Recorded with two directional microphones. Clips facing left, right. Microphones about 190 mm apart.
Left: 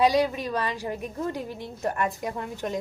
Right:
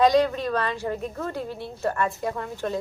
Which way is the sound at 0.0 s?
10° left (ahead or behind).